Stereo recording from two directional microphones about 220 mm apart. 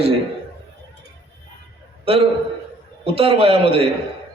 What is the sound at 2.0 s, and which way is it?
A man's voice, 25° right (ahead or behind).